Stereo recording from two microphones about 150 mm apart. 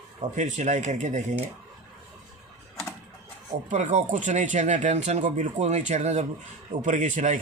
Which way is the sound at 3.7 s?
55° right (ahead or behind).